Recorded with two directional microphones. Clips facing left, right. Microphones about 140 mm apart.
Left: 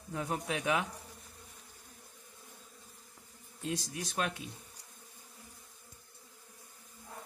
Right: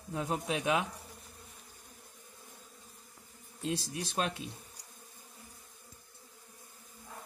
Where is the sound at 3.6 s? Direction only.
25° right (ahead or behind).